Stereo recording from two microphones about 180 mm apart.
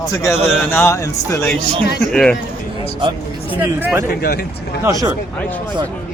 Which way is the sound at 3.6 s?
10° right (ahead or behind).